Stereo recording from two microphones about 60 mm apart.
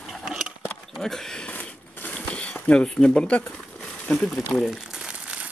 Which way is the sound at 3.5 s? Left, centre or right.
Centre.